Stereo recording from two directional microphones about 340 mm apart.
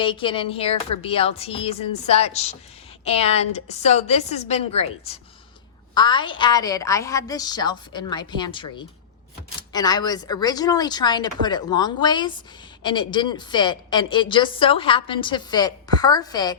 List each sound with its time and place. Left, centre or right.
0.0 s a woman's voice: centre